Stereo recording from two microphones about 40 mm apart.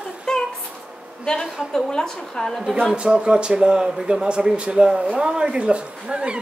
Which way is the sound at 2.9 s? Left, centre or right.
Right.